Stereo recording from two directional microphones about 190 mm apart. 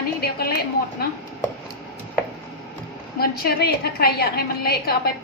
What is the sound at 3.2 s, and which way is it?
A woman's voice, 55° left (ahead or behind).